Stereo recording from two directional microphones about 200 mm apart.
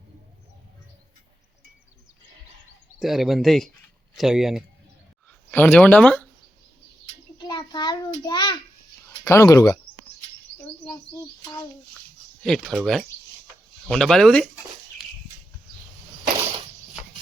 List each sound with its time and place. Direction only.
3.0 s speech: centre (ahead or behind)
5.5 s speech: 10° left (ahead or behind)
7.3 s a child's voice: 20° left (ahead or behind)
12.4 s speech: 5° left (ahead or behind)